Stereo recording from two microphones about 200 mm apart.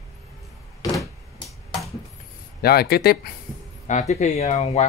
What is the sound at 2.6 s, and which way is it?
Speech, 50° left (ahead or behind).